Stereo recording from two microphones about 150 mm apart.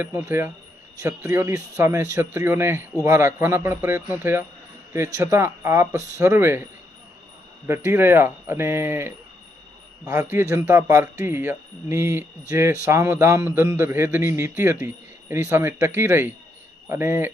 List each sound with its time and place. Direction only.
0.0 s speech: 15° right (ahead or behind)
7.7 s speech: 15° right (ahead or behind)